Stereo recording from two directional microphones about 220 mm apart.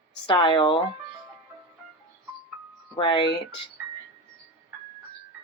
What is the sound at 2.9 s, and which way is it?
Speech, 20° left (ahead or behind).